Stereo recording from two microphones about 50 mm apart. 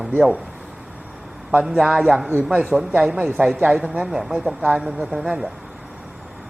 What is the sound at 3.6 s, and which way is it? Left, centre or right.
Speech, right.